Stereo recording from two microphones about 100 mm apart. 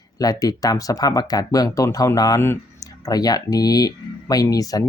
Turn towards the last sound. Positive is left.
turn(degrees=35)  # may be behind; listen again after turning